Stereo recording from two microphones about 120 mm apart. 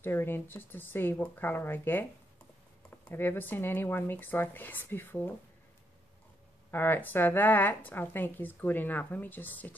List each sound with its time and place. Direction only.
0.0 s a woman's voice: 20° left (ahead or behind)
3.1 s a woman's voice: 15° left (ahead or behind)
6.7 s a woman's voice: 15° left (ahead or behind)